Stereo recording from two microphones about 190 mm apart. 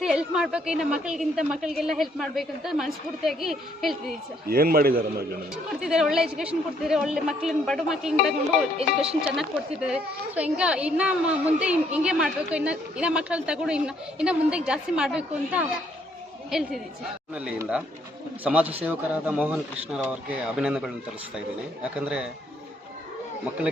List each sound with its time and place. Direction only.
0.0 s speech: 5° right (ahead or behind)
4.4 s a man's voice: 50° right (ahead or behind)
5.8 s speech: centre (ahead or behind)
22.0 s speech: 5° right (ahead or behind)